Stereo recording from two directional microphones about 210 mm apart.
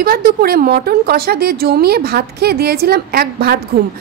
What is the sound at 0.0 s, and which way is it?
A woman's voice, 45° right (ahead or behind).